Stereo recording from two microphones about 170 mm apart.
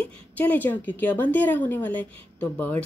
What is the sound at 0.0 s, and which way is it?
Speech, 10° left (ahead or behind).